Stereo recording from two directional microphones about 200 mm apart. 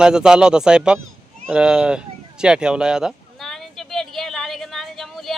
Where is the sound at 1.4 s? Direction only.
5° right (ahead or behind).